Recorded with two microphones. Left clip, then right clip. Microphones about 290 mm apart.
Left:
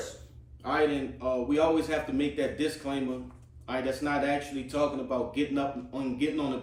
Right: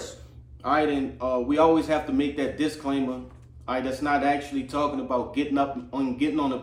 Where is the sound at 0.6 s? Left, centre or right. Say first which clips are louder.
Right 4 dB; centre.